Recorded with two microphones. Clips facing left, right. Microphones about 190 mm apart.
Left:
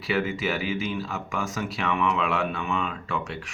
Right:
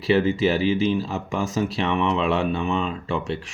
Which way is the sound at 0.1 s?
30° right (ahead or behind).